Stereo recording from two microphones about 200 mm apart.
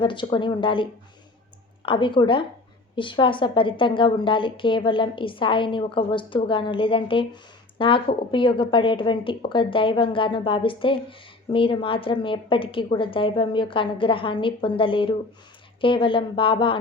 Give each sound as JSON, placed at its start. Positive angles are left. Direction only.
{"t": 0.0, "sound": "a woman's voice", "side_deg": 25}